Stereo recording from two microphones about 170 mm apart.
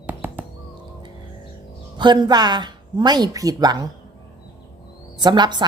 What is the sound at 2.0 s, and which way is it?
A woman's voice, 25° right (ahead or behind).